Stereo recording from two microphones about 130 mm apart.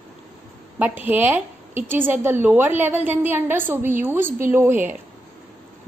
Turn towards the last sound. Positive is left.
turn(degrees=-15)  # may be behind; listen again after turning